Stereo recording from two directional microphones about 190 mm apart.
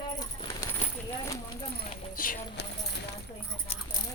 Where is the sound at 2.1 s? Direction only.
45° left (ahead or behind).